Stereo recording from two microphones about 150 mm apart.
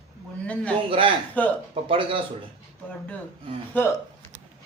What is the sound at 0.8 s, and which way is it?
Speech, 40° right (ahead or behind).